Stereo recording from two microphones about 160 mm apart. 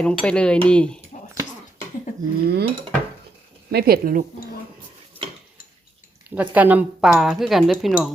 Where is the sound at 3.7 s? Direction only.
80° right; by 4.3 s 60° right (ahead or behind).